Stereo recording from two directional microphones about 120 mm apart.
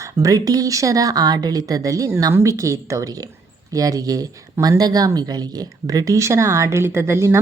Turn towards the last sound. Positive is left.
turn(degrees=-20)  # may be behind; listen again after turning